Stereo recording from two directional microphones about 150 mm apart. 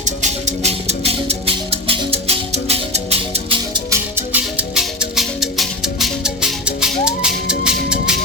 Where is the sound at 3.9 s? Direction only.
15° right (ahead or behind).